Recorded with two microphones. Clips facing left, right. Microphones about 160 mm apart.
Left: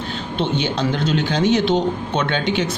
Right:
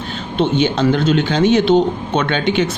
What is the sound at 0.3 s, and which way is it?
Speech, 55° right (ahead or behind).